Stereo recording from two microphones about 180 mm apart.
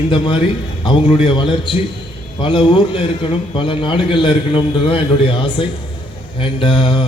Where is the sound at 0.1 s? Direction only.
30° left (ahead or behind).